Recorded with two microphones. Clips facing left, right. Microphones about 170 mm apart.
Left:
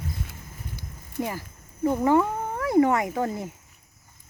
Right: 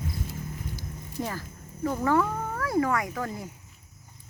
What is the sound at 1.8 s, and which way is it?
Speech, 20° left (ahead or behind).